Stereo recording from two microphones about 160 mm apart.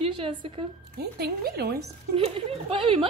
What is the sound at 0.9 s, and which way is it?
Speech, 75° right (ahead or behind).